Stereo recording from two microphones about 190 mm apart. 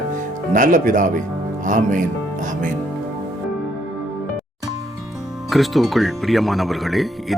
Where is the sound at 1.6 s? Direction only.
40° right (ahead or behind).